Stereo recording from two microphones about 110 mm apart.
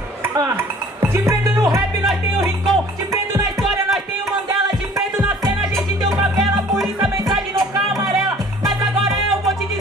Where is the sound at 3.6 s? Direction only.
Centre (ahead or behind).